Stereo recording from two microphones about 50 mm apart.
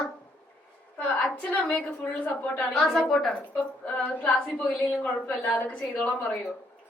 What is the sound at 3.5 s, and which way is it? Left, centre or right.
Speech, left.